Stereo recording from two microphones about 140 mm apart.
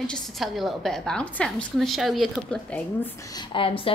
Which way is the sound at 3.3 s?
35° left (ahead or behind).